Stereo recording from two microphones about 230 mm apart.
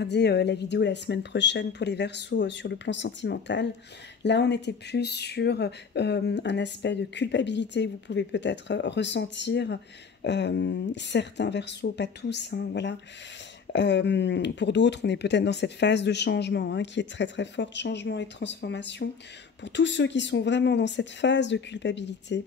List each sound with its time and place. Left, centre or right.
0.0 s speech: left